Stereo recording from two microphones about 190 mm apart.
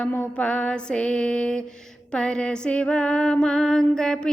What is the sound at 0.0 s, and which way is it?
Music, 10° left (ahead or behind).